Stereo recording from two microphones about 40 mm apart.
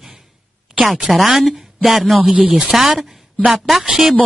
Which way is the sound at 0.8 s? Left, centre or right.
Centre.